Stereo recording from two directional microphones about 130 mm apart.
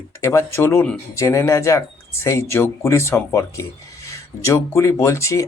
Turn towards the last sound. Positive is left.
turn(degrees=25)  # may be behind; listen again after turning